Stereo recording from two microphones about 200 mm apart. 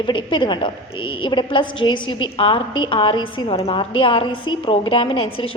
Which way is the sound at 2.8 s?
25° left (ahead or behind).